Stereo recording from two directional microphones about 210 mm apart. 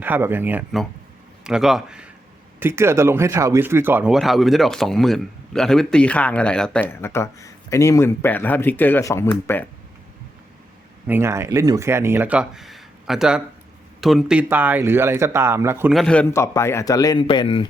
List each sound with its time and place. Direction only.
0.0 s speech: 10° right (ahead or behind); by 9.6 s 10° left (ahead or behind)
11.0 s speech: 10° right (ahead or behind)
16.0 s speech: 5° left (ahead or behind); by 17.7 s 20° left (ahead or behind)